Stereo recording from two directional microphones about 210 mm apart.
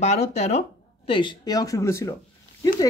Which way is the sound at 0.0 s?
30° left (ahead or behind).